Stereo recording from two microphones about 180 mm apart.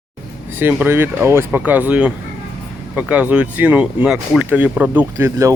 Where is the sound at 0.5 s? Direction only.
10° right (ahead or behind).